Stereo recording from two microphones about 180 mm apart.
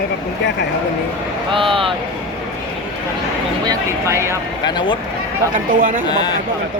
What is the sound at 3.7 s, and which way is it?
Speech, 15° right (ahead or behind).